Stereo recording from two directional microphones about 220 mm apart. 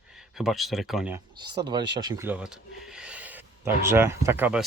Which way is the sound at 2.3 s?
5° right (ahead or behind).